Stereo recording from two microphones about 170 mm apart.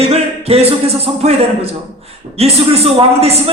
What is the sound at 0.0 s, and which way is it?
A man's voice, 35° right (ahead or behind).